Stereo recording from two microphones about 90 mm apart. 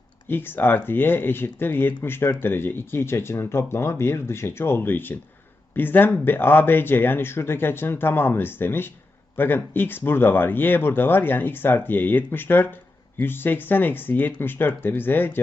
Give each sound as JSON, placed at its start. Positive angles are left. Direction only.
{"t": 0.3, "sound": "speech", "side_deg": 25}